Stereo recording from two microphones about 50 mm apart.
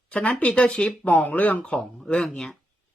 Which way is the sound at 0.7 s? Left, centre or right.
Centre.